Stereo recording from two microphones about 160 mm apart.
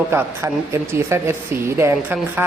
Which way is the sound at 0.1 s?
15° right (ahead or behind).